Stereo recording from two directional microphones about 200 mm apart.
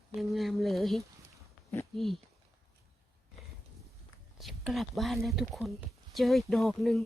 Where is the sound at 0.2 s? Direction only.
Centre (ahead or behind).